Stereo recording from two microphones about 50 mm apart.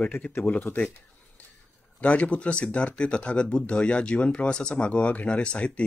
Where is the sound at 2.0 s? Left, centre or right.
Left.